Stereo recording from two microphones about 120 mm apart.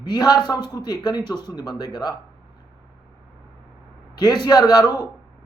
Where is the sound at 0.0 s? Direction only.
35° left (ahead or behind).